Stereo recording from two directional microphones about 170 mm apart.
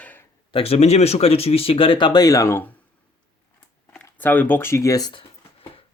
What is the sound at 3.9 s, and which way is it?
Speech, 10° left (ahead or behind).